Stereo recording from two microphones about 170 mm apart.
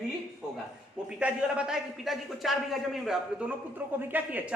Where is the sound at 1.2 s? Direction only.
5° right (ahead or behind).